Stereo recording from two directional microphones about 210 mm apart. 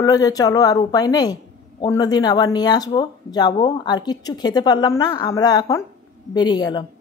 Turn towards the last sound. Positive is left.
turn(degrees=20)  # may be behind; listen again after turning